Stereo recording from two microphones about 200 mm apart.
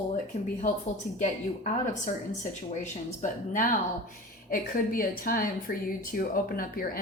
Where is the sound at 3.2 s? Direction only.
40° left (ahead or behind).